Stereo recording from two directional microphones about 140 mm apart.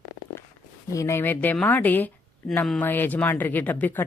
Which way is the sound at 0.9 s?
20° left (ahead or behind).